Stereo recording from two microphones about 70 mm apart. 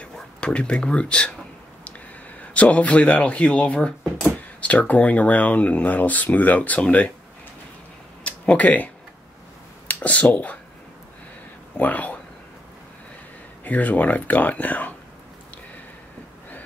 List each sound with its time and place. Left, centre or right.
0.4 s speech: centre
2.5 s speech: centre
8.2 s a sound: centre
10.3 s speech: left
11.8 s speech: left
13.7 s speech: left